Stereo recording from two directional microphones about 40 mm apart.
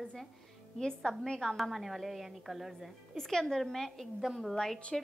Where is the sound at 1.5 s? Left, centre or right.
Centre.